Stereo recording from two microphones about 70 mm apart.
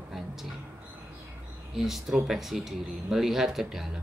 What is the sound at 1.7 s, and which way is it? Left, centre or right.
A man's voice, centre.